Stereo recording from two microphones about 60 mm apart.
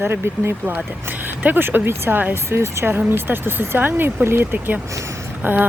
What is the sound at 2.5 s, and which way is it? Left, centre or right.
Speech, right.